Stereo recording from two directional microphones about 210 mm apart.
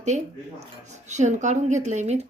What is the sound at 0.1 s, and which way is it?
A woman's voice, 35° right (ahead or behind).